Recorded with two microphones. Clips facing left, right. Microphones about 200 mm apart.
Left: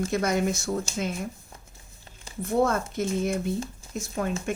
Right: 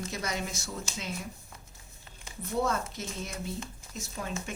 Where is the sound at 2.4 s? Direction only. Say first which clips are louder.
Left 6 dB; 50° left (ahead or behind).